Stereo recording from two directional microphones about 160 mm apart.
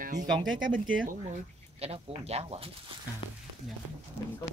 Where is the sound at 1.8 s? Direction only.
40° right (ahead or behind).